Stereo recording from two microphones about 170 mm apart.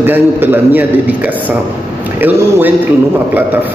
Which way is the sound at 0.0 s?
10° right (ahead or behind).